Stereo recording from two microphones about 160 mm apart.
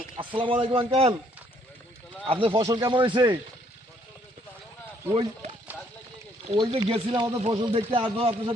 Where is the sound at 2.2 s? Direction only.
35° right (ahead or behind).